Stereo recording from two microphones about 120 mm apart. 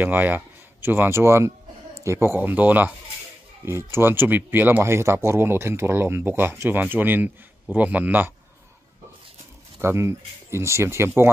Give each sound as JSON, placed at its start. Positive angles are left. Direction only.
{"t": 0.0, "sound": "speech", "side_deg": -15}
{"t": 9.8, "sound": "speech", "side_deg": -20}